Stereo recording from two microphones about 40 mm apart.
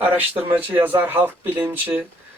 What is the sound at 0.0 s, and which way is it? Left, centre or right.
Speech, right.